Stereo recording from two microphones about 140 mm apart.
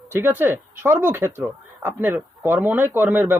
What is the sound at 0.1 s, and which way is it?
Speech, 15° right (ahead or behind).